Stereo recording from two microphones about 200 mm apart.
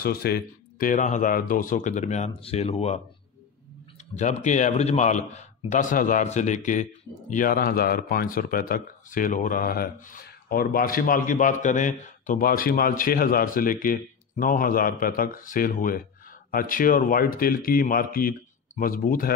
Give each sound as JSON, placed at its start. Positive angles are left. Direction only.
{"t": 0.0, "sound": "speech", "side_deg": 50}
{"t": 4.1, "sound": "a man's voice", "side_deg": 35}